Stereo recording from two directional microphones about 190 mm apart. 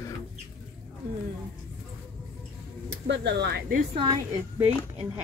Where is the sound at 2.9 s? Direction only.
65° right (ahead or behind).